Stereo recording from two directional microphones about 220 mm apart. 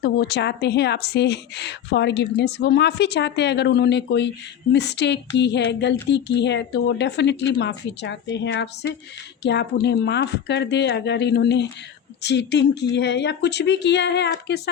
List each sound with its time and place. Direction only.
0.0 s a woman's voice: 50° left (ahead or behind)